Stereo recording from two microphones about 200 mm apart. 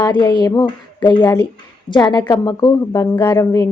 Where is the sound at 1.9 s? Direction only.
20° left (ahead or behind).